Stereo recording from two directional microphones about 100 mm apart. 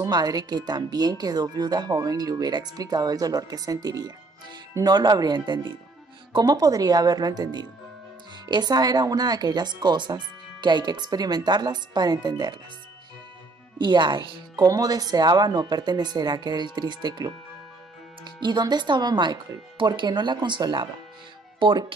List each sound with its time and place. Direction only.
0.0 s speech: 40° right (ahead or behind)
13.7 s speech: 50° right (ahead or behind)